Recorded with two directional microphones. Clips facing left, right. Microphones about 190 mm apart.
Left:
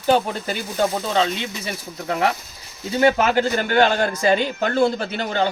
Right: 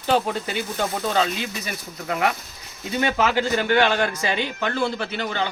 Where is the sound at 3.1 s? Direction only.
50° left (ahead or behind).